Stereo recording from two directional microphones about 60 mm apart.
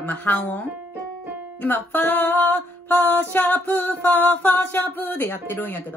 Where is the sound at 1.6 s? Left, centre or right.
Left.